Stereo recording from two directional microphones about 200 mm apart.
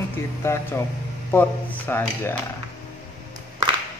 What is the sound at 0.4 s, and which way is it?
Speech, 15° left (ahead or behind).